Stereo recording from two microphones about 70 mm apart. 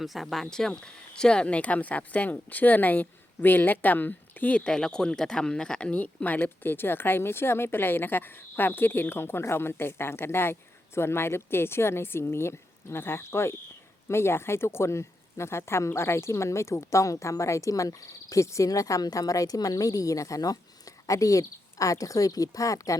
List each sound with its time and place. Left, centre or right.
0.0 s speech: centre
0.7 s speech: centre; by 23.0 s left